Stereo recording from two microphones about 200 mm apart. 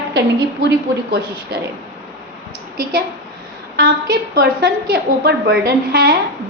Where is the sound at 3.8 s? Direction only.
50° right (ahead or behind).